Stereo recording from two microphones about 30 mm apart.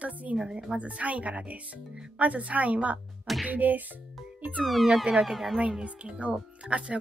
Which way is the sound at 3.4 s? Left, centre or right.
Right.